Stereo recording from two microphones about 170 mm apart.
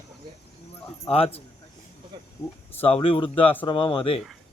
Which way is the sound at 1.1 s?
35° left (ahead or behind).